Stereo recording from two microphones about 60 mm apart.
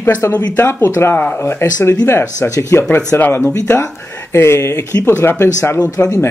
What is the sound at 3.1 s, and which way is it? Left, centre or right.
Speech, left.